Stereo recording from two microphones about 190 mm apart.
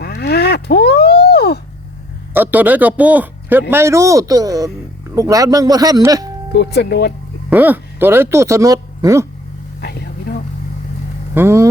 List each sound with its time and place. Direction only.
0.0 s a sound: 60° left (ahead or behind)
2.3 s a man's voice: 10° right (ahead or behind)
6.5 s speech: 60° left (ahead or behind)
7.5 s speech: 10° right (ahead or behind)
9.8 s a sound: 55° left (ahead or behind)
11.3 s a man's voice: 15° right (ahead or behind)